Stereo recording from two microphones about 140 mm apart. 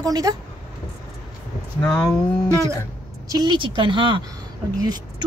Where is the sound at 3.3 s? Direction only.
30° right (ahead or behind).